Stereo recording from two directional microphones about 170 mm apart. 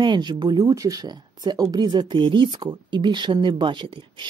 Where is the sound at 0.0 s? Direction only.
25° right (ahead or behind).